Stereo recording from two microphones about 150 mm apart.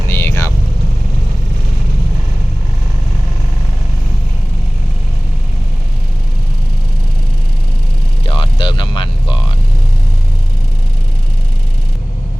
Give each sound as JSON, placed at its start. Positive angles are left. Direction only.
{"t": 0.1, "sound": "vehicle", "side_deg": 15}
{"t": 8.3, "sound": "vehicle", "side_deg": 35}